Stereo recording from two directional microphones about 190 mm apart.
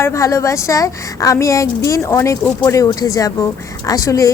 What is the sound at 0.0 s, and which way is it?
A woman's voice, 15° left (ahead or behind).